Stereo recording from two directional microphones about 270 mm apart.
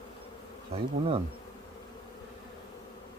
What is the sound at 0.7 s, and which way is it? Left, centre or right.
Speech, right.